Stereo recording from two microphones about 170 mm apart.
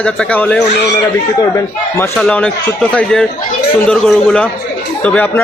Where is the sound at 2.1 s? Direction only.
5° left (ahead or behind).